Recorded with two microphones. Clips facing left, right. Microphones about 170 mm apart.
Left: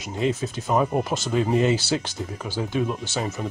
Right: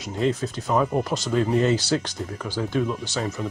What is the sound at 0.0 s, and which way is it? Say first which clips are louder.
Speech: right 1 dB; 5° left (ahead or behind).